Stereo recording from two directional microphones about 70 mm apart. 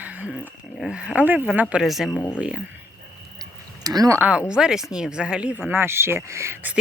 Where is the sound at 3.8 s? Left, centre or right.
Right.